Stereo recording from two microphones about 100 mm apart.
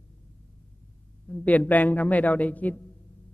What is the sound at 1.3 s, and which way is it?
A man's voice, 15° left (ahead or behind).